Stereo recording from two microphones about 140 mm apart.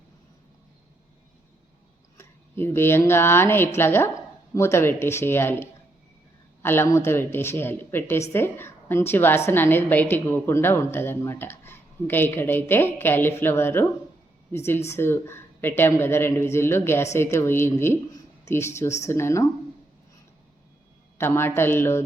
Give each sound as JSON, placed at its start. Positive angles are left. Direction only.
{"t": 2.1, "sound": "speech", "side_deg": 15}
{"t": 21.2, "sound": "speech", "side_deg": 15}